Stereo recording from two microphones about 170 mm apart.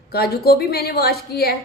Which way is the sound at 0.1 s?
65° left (ahead or behind).